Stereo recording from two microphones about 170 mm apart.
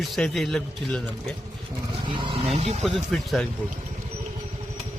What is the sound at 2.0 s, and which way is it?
Speech, 30° right (ahead or behind).